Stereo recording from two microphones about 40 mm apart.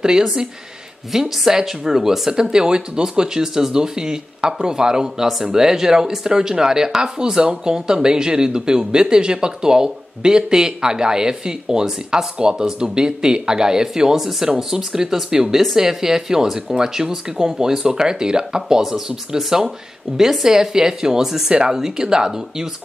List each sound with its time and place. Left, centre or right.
0.0 s speech: centre